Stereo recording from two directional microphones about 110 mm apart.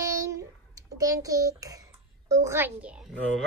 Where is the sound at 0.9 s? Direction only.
30° right (ahead or behind).